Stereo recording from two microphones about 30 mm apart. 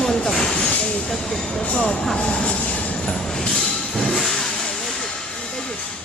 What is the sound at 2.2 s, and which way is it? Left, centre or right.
Speech, left.